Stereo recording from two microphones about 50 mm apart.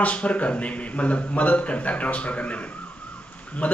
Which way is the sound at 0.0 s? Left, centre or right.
Left.